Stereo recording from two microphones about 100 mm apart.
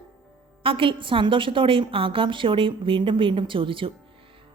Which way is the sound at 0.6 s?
60° right (ahead or behind).